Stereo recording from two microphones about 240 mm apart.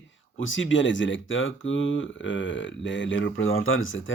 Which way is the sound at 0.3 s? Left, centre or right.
Left.